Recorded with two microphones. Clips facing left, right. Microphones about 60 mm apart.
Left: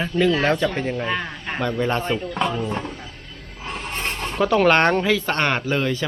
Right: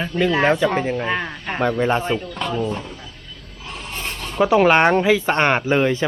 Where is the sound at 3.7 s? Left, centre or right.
Left.